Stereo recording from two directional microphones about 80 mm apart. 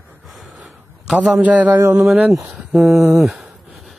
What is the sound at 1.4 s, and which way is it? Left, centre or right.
Speech, centre.